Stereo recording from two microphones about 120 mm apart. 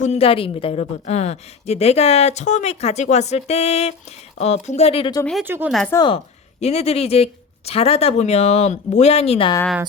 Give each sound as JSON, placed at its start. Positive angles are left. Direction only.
{"t": 0.0, "sound": "a woman's voice", "side_deg": 60}
{"t": 5.5, "sound": "a woman's voice", "side_deg": -15}
{"t": 5.9, "sound": "speech", "side_deg": 25}
{"t": 6.6, "sound": "a woman's voice", "side_deg": 65}